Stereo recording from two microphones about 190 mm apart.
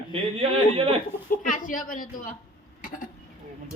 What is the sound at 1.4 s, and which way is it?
Speech, 45° left (ahead or behind).